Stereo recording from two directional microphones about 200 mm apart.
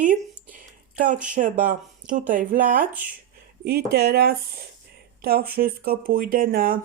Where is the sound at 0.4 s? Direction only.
40° right (ahead or behind).